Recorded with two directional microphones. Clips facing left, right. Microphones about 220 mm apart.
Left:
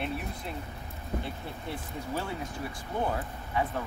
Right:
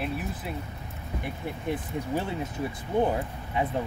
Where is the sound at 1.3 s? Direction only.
15° right (ahead or behind).